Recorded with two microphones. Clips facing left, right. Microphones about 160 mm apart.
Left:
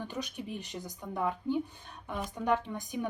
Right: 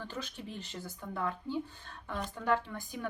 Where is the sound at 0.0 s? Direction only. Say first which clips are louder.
Left 3 dB; 15° left (ahead or behind).